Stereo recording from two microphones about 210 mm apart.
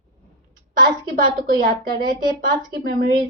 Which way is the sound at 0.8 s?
40° right (ahead or behind).